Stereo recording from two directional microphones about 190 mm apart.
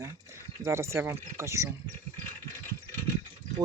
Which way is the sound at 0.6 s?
15° right (ahead or behind).